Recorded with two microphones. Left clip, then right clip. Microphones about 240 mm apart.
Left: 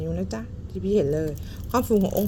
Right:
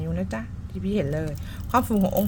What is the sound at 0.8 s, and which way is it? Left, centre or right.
Speech, centre.